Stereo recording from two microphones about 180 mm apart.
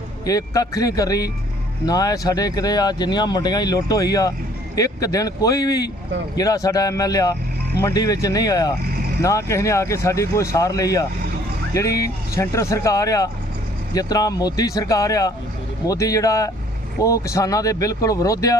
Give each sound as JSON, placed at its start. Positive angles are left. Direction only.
{"t": 0.3, "sound": "speech", "side_deg": 20}